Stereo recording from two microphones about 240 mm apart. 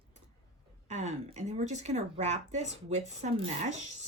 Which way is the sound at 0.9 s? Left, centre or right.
Right.